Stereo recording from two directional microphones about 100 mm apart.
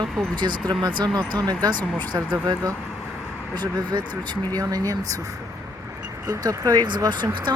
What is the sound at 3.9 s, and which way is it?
Speech, 50° right (ahead or behind).